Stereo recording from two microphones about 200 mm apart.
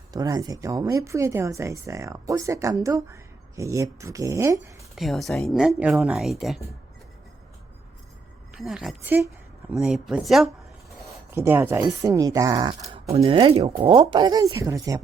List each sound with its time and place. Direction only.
0.1 s speech: 20° right (ahead or behind)
4.9 s speech: centre (ahead or behind)
8.5 s speech: centre (ahead or behind)
11.0 s a sound: 15° right (ahead or behind)
12.0 s speech: 15° right (ahead or behind)